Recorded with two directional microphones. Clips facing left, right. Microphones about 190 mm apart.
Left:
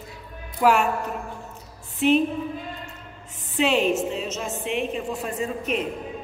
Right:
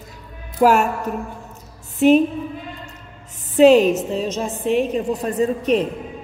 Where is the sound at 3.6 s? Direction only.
40° right (ahead or behind).